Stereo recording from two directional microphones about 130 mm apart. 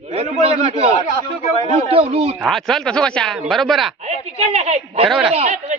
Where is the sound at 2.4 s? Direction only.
Centre (ahead or behind).